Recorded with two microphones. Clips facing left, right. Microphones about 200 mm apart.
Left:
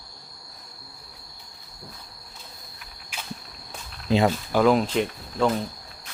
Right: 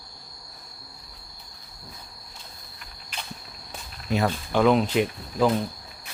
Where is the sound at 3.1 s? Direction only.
10° left (ahead or behind).